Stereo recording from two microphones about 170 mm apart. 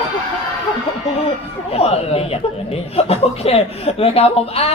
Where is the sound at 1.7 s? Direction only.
35° left (ahead or behind).